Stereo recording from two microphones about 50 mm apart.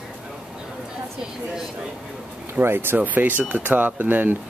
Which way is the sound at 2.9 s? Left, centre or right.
Right.